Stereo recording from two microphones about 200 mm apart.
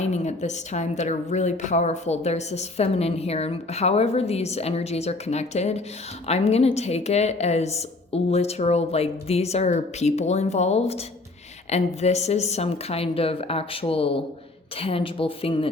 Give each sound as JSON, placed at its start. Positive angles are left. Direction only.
{"t": 0.0, "sound": "a woman's voice", "side_deg": 35}